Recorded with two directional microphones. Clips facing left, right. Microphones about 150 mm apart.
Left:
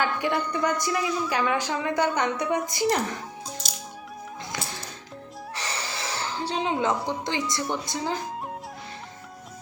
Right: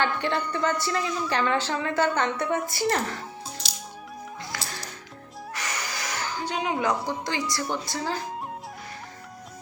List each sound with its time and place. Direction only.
0.0 s a woman's voice: 10° left (ahead or behind)
4.5 s music: 20° left (ahead or behind)
5.5 s gasp: 30° left (ahead or behind)
7.1 s a woman's voice: 20° left (ahead or behind)